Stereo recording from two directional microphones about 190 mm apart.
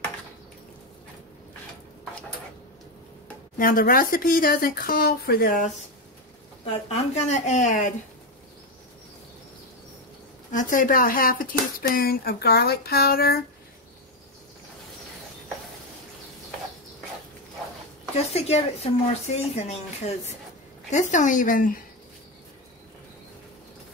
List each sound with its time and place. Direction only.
3.5 s speech: 50° left (ahead or behind)
7.2 s speech: 35° left (ahead or behind)
10.5 s speech: 45° left (ahead or behind)
18.3 s speech: 35° left (ahead or behind)
20.9 s speech: 40° left (ahead or behind)